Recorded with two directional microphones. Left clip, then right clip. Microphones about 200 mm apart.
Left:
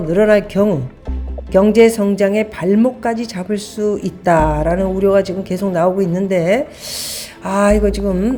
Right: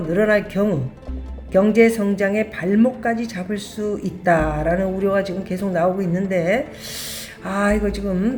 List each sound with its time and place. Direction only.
0.1 s a woman's voice: 35° left (ahead or behind)